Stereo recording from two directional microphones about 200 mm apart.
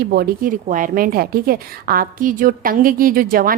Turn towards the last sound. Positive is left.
turn(degrees=-45)  # may be behind; listen again after turning